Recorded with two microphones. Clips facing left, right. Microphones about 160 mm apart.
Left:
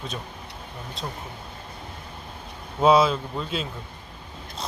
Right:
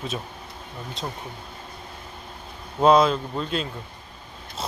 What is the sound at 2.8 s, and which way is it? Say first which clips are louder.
Speech: right 1 dB; 5° left (ahead or behind).